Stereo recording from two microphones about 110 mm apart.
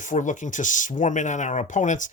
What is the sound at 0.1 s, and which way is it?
Speech, 80° left.